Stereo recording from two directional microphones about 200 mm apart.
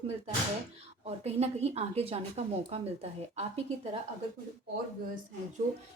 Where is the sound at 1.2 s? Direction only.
30° right (ahead or behind).